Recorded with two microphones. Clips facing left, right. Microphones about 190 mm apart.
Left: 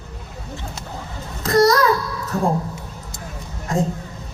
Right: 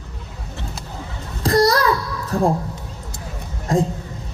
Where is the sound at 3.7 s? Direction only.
30° right (ahead or behind).